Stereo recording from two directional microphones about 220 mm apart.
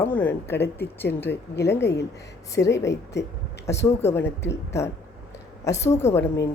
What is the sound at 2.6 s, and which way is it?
Speech, 55° left (ahead or behind).